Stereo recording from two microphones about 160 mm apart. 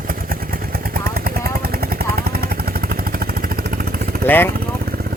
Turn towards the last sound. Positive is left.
turn(degrees=15)  # may be behind; listen again after turning